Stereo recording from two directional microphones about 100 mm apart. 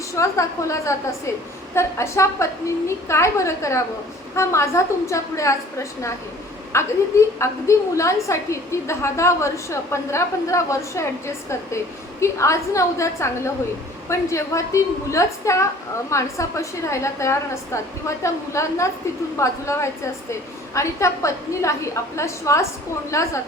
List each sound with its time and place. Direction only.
0.1 s a woman's voice: 30° left (ahead or behind)
12.2 s a woman's voice: 30° left (ahead or behind)